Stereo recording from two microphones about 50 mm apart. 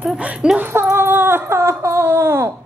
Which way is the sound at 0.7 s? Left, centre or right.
Right.